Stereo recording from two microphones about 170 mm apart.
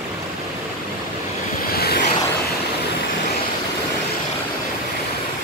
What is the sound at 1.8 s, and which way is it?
Vehicle, 65° left (ahead or behind).